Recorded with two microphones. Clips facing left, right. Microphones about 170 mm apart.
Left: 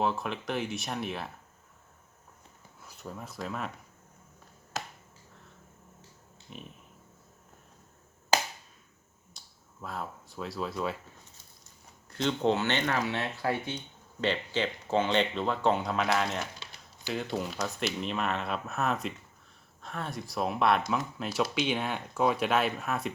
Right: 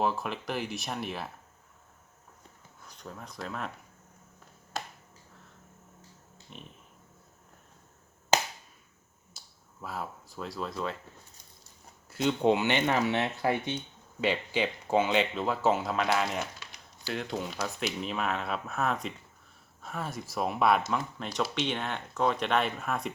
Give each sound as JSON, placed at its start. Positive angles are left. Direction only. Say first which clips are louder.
{"t": 0.0, "sound": "speech", "louder": "even", "side_deg": 0}
{"t": 2.8, "sound": "speech", "louder": "left 2 dB", "side_deg": 5}
{"t": 6.5, "sound": "speech", "louder": "left 3 dB", "side_deg": 5}
{"t": 9.4, "sound": "finger snapping", "louder": "right 1 dB", "side_deg": -5}
{"t": 9.8, "sound": "speech", "louder": "even", "side_deg": -5}
{"t": 12.1, "sound": "speech", "louder": "right 2 dB", "side_deg": -10}